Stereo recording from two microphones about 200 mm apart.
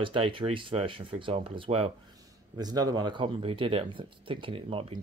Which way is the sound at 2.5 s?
20° right (ahead or behind).